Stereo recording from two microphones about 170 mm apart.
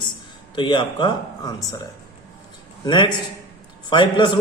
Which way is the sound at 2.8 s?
25° left (ahead or behind).